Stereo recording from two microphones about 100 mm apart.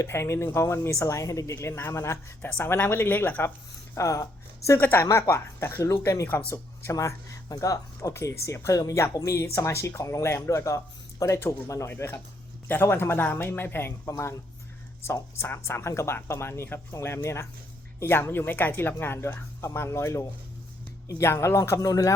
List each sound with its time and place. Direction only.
0.0 s speech: 25° left (ahead or behind)
3.9 s speech: 30° left (ahead or behind)
4.8 s speech: 20° left (ahead or behind); by 22.1 s 35° left (ahead or behind)